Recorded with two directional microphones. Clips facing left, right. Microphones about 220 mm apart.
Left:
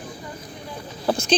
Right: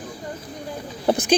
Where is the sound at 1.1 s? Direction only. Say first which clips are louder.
Right 3 dB; 15° right (ahead or behind).